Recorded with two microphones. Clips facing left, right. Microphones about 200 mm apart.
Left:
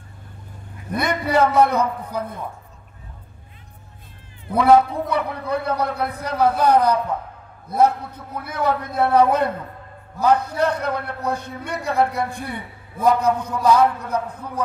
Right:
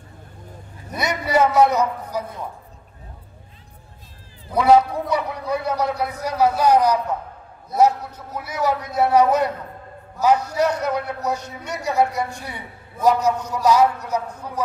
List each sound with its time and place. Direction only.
0.9 s vehicle: 55° left (ahead or behind)
1.5 s a man's voice: 55° left (ahead or behind)
5.1 s a man's voice: 55° left (ahead or behind)